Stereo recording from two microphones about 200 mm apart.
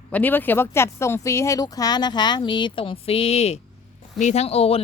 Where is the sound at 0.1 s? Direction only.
10° left (ahead or behind).